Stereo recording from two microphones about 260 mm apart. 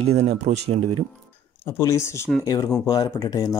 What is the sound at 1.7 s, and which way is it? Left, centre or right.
Speech, centre.